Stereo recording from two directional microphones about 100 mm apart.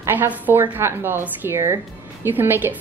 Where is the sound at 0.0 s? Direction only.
20° right (ahead or behind).